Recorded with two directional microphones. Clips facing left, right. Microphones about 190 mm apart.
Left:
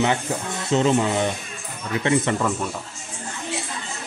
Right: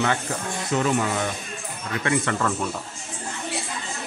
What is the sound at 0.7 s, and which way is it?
Speech, 25° left (ahead or behind).